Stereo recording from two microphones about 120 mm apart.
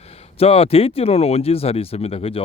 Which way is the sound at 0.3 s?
55° left (ahead or behind).